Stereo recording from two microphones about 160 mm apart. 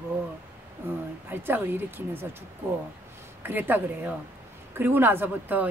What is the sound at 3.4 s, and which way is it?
Speech, 10° right (ahead or behind).